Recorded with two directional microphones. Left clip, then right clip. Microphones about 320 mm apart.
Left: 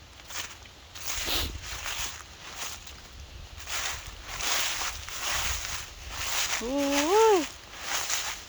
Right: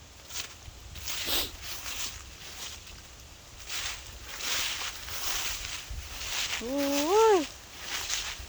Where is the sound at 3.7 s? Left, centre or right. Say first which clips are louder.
Left 3 dB; centre.